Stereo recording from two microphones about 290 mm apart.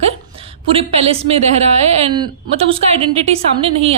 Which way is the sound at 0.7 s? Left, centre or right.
Centre.